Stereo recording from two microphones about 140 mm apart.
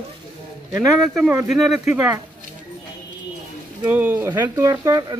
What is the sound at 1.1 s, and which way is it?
Speech, 5° right (ahead or behind).